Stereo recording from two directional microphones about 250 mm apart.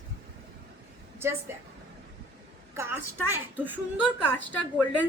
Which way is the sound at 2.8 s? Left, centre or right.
Centre.